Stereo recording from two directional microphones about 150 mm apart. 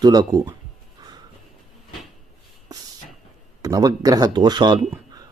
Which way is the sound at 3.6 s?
25° right (ahead or behind).